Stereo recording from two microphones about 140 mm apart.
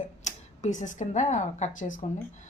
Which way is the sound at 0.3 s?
60° left (ahead or behind).